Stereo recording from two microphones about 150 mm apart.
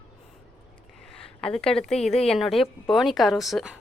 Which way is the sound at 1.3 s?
5° left (ahead or behind).